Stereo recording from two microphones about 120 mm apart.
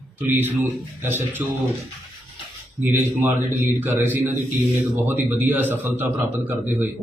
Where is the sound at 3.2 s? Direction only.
15° right (ahead or behind).